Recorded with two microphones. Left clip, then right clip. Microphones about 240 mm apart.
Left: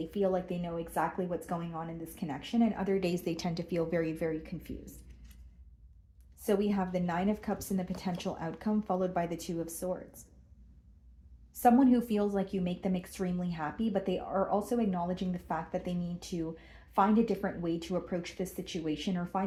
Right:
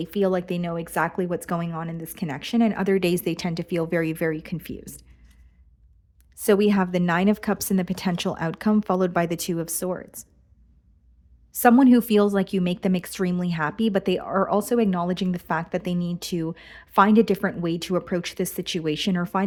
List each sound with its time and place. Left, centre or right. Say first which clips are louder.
0.1 s speech: right 8 dB; right
6.3 s speech: right 11 dB; right
11.6 s speech: right 8 dB; right